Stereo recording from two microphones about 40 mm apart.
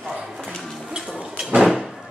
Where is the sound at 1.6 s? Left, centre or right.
Centre.